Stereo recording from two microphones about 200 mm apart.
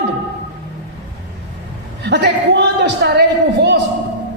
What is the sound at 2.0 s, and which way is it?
Speech, 55° right (ahead or behind).